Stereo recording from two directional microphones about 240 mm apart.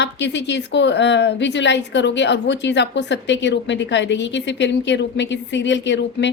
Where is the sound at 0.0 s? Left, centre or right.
Left.